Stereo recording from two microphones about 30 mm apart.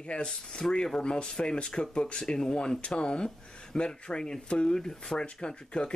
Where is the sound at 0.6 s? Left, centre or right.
Centre.